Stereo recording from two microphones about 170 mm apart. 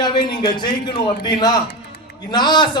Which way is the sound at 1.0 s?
25° left (ahead or behind).